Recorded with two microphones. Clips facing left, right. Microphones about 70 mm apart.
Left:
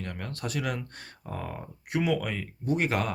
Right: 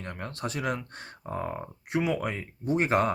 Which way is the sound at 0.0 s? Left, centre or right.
Right.